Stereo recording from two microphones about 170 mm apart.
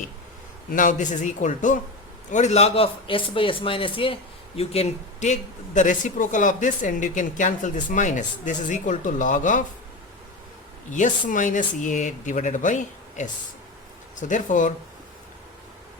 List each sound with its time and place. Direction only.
0.7 s speech: 50° left (ahead or behind)
10.9 s speech: 45° left (ahead or behind)